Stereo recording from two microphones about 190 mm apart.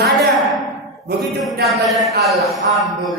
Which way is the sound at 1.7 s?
Centre (ahead or behind).